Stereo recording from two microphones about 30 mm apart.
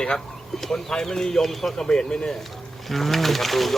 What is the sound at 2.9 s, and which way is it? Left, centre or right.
Speech, centre.